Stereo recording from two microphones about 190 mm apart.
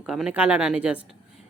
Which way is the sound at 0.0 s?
5° right (ahead or behind).